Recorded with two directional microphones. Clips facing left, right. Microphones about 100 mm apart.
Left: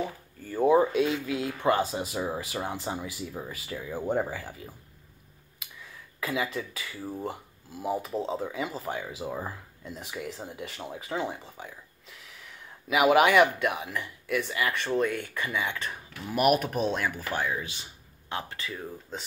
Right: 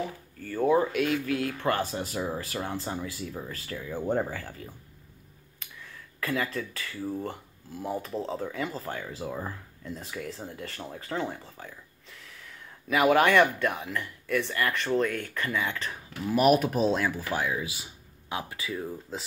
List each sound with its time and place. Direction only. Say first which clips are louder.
0.4 s speech: left 2 dB; 15° left (ahead or behind); by 19.2 s centre (ahead or behind)